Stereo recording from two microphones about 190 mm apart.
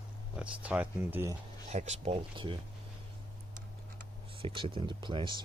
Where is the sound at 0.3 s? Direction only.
5° right (ahead or behind).